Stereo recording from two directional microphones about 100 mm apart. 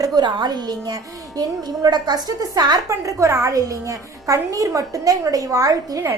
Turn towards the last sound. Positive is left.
turn(degrees=-35)  # may be behind; listen again after turning